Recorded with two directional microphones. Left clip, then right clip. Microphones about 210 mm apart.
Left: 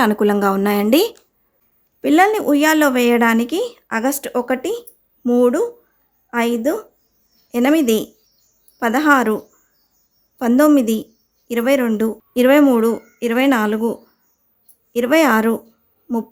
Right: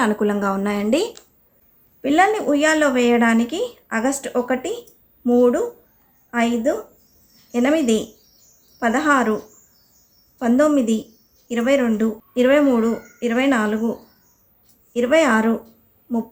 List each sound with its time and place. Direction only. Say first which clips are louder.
0.0 s a woman's voice: left 4 dB; 50° left (ahead or behind)
14.9 s a woman's voice: left 2 dB; 50° left (ahead or behind)